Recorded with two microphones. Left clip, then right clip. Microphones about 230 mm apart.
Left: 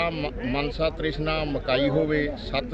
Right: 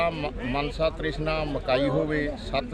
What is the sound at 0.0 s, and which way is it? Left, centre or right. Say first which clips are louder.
Speech: even; centre.